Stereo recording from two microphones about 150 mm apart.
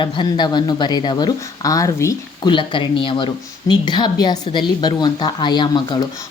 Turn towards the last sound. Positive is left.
turn(degrees=30)  # may be behind; listen again after turning